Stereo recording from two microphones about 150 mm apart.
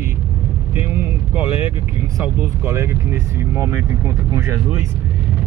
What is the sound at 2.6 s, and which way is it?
Speech, 15° right (ahead or behind).